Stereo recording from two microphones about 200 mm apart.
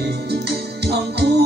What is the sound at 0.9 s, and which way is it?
Music, 55° right (ahead or behind).